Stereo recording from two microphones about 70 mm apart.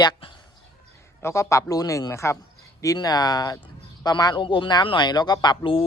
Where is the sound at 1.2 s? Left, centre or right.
Left.